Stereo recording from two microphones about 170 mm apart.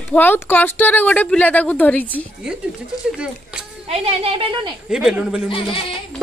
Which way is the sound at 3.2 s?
5° right (ahead or behind).